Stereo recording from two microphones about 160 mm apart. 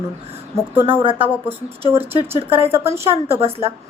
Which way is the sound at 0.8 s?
35° right (ahead or behind).